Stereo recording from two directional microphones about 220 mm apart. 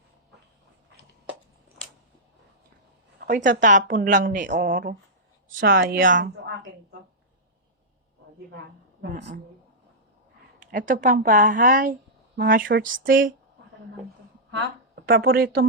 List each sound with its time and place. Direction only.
3.2 s a woman's voice: 40° right (ahead or behind)
10.6 s speech: 35° right (ahead or behind)
14.9 s speech: 45° right (ahead or behind)